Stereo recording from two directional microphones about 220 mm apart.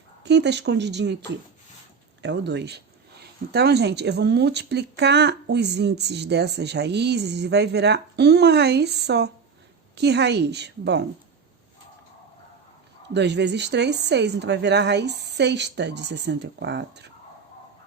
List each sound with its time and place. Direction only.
0.2 s speech: 50° right (ahead or behind)
2.2 s speech: 50° right (ahead or behind)
13.1 s speech: 50° right (ahead or behind)